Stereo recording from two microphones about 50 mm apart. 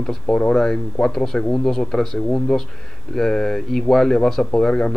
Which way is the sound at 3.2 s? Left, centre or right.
Centre.